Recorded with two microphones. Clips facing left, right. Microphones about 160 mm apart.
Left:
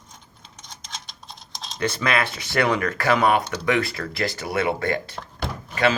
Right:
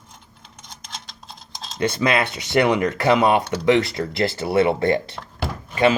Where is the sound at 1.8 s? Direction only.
20° right (ahead or behind).